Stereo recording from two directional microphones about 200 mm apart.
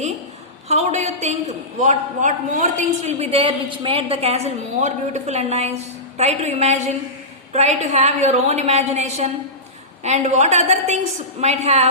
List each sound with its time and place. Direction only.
0.7 s a woman's voice: 35° right (ahead or behind)